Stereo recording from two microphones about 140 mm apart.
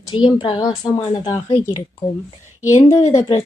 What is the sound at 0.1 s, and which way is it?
Speech, 40° left (ahead or behind).